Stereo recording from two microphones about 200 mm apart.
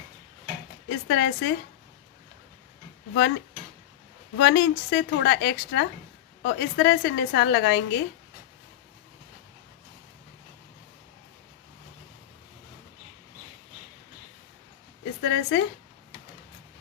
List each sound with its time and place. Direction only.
0.9 s speech: 65° left (ahead or behind)
4.4 s a woman's voice: 60° left (ahead or behind)
15.2 s a woman's voice: 65° left (ahead or behind)